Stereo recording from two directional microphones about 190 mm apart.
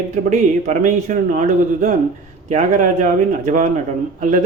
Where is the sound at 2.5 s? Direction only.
40° right (ahead or behind).